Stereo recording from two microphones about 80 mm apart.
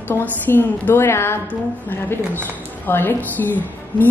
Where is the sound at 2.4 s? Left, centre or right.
Left.